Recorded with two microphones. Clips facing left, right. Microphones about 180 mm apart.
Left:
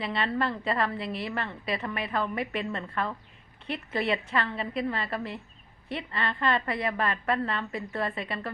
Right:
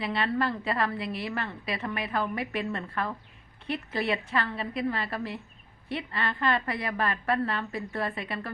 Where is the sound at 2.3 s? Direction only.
25° left (ahead or behind).